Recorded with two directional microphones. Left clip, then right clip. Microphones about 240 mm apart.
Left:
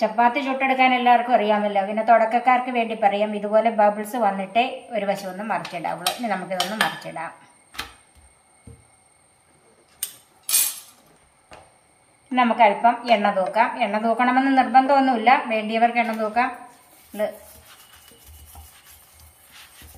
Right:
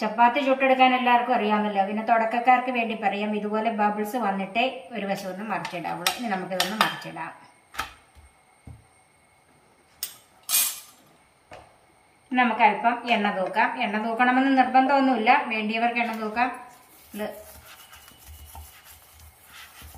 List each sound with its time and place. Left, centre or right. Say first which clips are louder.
0.3 s a woman's voice: right 1 dB; centre
12.3 s a woman's voice: left 3 dB; left